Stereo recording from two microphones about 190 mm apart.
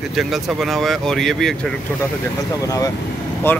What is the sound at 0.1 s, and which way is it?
Speech, centre (ahead or behind).